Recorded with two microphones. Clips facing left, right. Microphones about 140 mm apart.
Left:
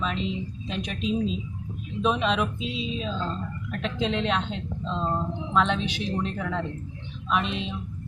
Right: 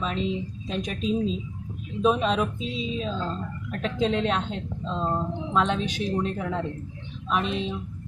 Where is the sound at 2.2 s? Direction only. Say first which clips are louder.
Right 1 dB; 40° right (ahead or behind).